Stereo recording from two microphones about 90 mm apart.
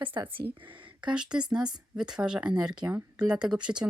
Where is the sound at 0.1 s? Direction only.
45° right (ahead or behind).